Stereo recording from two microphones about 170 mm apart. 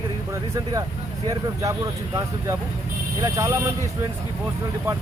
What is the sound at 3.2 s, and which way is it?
Speech, 20° right (ahead or behind).